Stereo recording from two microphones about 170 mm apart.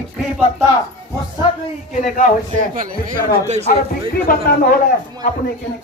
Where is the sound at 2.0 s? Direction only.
50° left (ahead or behind).